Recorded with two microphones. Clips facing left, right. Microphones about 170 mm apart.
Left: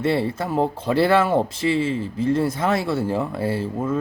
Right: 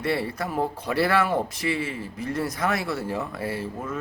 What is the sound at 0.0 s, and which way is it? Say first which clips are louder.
Speech: left 5 dB; 25° left (ahead or behind).